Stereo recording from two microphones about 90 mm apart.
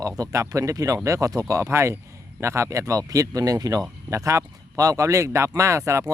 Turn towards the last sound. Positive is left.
turn(degrees=-30)  # may be behind; listen again after turning